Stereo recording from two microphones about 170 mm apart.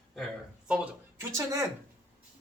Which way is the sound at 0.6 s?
5° right (ahead or behind).